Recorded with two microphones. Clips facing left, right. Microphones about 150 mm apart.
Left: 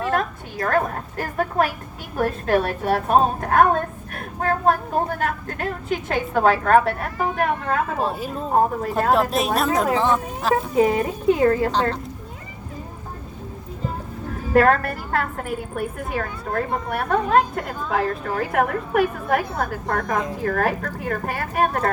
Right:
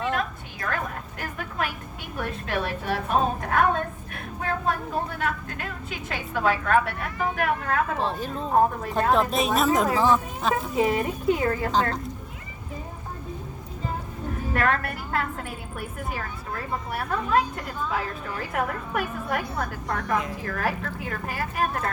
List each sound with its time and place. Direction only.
0.0 s a sound: 45° left (ahead or behind)
2.1 s a woman's voice: 45° left (ahead or behind)
8.0 s speech: 10° left (ahead or behind)
10.8 s speech: 35° left (ahead or behind)
14.5 s a woman's voice: 40° left (ahead or behind)
15.7 s a woman's voice: 55° left (ahead or behind)